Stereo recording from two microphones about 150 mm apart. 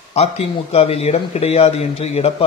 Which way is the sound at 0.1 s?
45° left (ahead or behind).